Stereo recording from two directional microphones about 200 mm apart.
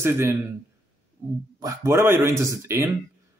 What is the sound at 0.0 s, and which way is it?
Speech, 15° right (ahead or behind).